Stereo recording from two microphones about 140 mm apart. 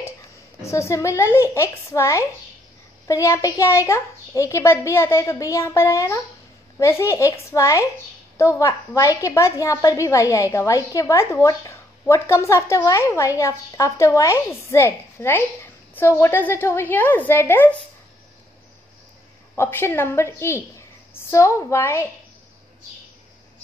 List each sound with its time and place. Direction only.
0.6 s a woman's voice: 20° left (ahead or behind)
19.5 s a woman's voice: 15° left (ahead or behind)